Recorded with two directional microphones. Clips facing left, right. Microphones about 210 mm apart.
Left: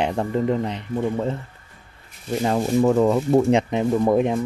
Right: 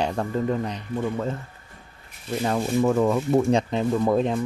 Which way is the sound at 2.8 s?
35° left (ahead or behind).